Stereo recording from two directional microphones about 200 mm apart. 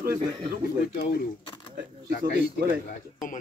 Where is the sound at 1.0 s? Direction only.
45° left (ahead or behind).